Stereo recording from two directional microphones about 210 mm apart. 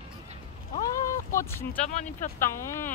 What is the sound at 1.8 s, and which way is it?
Speech, 35° left (ahead or behind).